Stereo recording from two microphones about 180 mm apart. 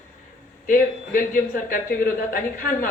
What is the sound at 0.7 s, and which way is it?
A woman's voice, 50° left (ahead or behind).